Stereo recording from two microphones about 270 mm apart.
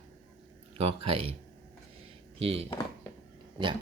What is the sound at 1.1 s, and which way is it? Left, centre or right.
Speech, right.